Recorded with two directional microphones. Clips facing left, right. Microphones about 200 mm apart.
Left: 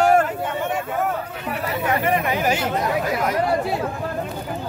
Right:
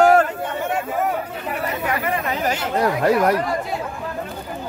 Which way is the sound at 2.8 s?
70° right (ahead or behind).